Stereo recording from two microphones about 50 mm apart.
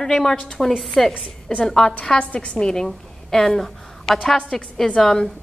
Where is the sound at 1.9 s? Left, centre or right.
Left.